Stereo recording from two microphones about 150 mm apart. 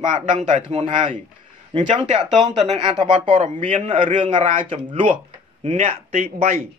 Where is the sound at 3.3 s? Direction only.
55° right (ahead or behind).